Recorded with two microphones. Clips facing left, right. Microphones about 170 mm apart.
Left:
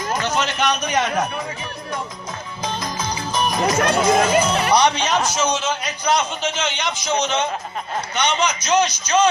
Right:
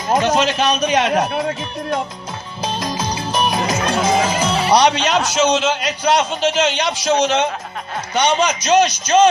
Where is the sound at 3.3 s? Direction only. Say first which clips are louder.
Right 3 dB; 70° right (ahead or behind).